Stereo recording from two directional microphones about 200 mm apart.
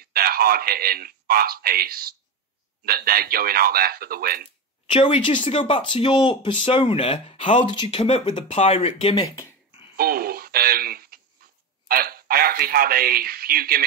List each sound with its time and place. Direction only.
0.0 s a man's voice: 50° right (ahead or behind)
4.8 s speech: 25° left (ahead or behind)
9.9 s a man's voice: 50° right (ahead or behind)